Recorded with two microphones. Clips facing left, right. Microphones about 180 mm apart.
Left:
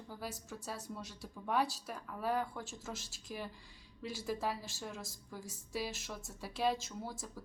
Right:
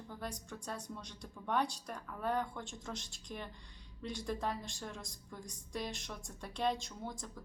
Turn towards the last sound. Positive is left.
turn(degrees=5)  # may be behind; listen again after turning